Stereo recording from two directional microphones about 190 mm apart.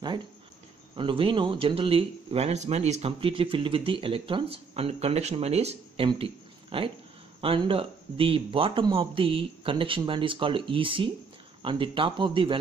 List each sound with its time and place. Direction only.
0.9 s speech: 25° right (ahead or behind)